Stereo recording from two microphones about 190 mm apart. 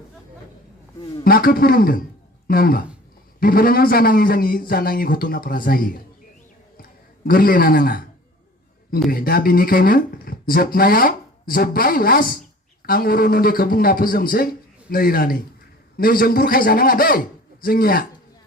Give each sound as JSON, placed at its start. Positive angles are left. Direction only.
{"t": 1.2, "sound": "speech", "side_deg": 50}
{"t": 7.3, "sound": "speech", "side_deg": 50}
{"t": 9.0, "sound": "speech", "side_deg": 50}